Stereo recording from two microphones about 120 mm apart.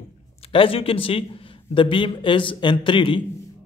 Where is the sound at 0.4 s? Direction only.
50° left (ahead or behind).